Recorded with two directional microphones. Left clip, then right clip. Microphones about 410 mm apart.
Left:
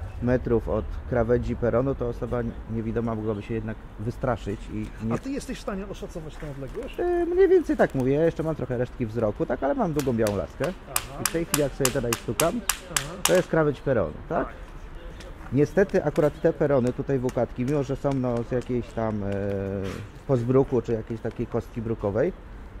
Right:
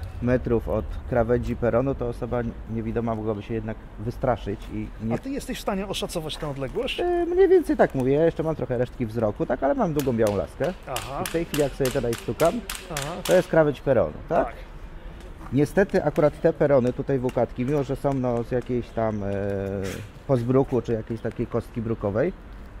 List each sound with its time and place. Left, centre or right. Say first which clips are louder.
0.2 s speech: right 1 dB; centre
5.7 s speech: right 6 dB; centre
7.0 s speech: even; centre
10.9 s speech: right 1 dB; right
11.3 s speech: right 1 dB; centre
15.5 s speech: even; centre